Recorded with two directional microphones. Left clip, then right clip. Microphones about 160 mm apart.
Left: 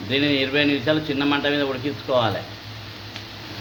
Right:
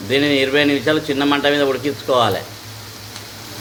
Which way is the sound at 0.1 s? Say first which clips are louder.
Right 5 dB; 20° right (ahead or behind).